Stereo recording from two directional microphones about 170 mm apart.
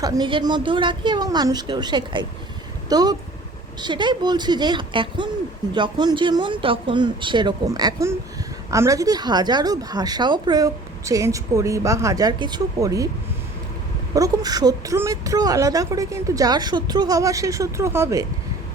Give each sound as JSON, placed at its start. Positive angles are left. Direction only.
{"t": 0.0, "sound": "speech", "side_deg": -25}
{"t": 14.1, "sound": "speech", "side_deg": -20}